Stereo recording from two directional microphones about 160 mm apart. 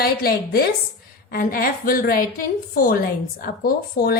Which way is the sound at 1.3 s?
65° left (ahead or behind).